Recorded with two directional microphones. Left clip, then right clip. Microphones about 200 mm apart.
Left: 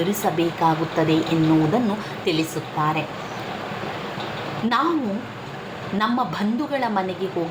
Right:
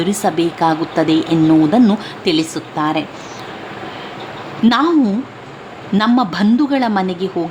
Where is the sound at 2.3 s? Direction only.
45° right (ahead or behind).